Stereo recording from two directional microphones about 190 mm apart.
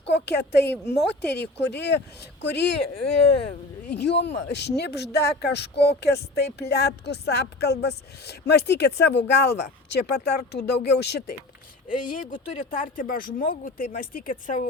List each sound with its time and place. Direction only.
0.0 s speech: 65° left (ahead or behind)
3.9 s speech: 65° left (ahead or behind)
11.9 s speech: 45° left (ahead or behind)